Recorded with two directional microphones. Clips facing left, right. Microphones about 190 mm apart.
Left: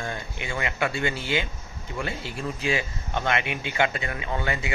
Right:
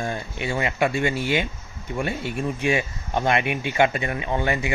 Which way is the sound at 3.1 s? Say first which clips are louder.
Right 5 dB; 20° right (ahead or behind).